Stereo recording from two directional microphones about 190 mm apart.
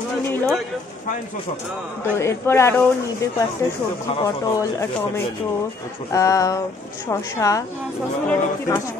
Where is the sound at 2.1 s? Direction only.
15° left (ahead or behind).